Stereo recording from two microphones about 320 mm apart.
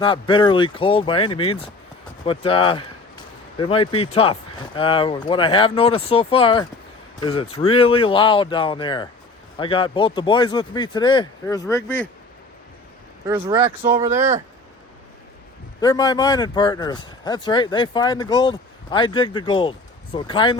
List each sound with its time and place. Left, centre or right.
0.0 s speech: centre
13.2 s speech: centre
15.8 s speech: centre